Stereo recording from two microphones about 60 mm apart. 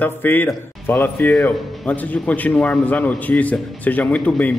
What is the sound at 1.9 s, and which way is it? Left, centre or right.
A man's voice, left.